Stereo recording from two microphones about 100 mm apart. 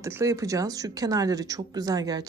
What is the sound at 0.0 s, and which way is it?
Speech, 30° right (ahead or behind).